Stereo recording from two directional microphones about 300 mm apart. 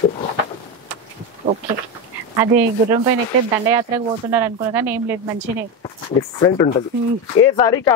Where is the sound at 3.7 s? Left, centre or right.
Centre.